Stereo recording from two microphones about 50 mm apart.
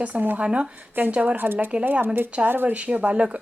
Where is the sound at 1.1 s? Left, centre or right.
Right.